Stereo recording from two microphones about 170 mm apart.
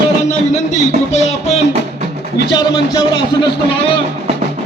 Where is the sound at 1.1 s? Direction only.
40° left (ahead or behind).